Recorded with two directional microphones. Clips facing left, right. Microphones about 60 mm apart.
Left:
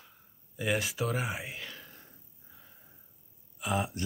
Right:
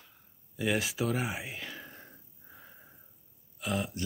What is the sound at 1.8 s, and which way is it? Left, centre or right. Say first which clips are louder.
Whispering: right 4 dB; right.